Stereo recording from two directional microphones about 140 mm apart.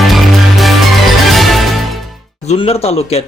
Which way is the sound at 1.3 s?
Centre (ahead or behind).